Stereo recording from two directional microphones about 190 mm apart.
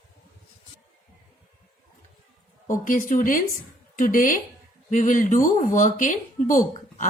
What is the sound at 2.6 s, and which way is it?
Speech, 45° left (ahead or behind).